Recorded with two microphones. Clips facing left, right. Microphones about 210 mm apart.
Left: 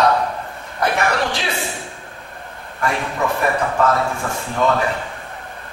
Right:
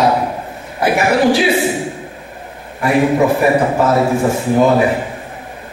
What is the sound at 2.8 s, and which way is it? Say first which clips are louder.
A man's voice: right 9 dB; 10° right (ahead or behind).